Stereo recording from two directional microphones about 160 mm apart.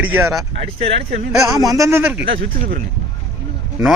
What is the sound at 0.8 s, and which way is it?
Speech, 35° right (ahead or behind).